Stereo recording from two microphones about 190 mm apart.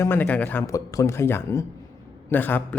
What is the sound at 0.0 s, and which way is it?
A man's voice, 10° left (ahead or behind).